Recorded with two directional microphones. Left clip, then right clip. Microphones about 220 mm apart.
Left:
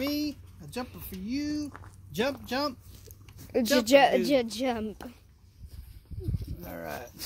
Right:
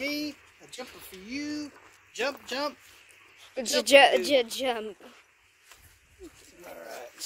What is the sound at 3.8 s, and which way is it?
Speech, 5° right (ahead or behind).